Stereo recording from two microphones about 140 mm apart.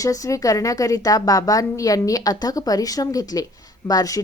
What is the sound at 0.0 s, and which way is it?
A woman's voice, 25° left (ahead or behind).